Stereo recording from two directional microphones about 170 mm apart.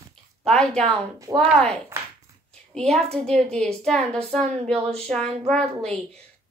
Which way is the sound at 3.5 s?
5° left (ahead or behind).